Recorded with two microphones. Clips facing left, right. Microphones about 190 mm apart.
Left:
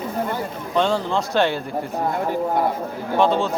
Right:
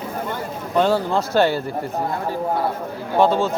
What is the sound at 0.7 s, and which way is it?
Speech, 5° right (ahead or behind).